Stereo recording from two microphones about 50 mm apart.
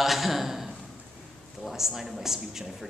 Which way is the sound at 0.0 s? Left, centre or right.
Centre.